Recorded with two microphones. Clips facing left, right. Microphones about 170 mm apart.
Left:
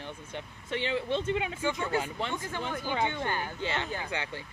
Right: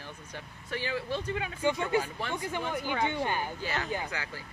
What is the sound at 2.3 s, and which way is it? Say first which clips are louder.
Speech: right 2 dB; 15° right (ahead or behind).